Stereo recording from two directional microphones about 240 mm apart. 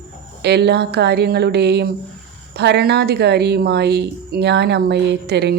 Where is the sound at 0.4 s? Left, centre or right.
Right.